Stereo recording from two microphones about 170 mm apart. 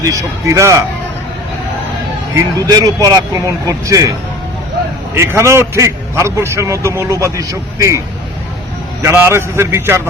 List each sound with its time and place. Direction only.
0.0 s a man's voice: 20° right (ahead or behind)
2.3 s speech: 20° right (ahead or behind)
5.1 s a man's voice: 15° right (ahead or behind)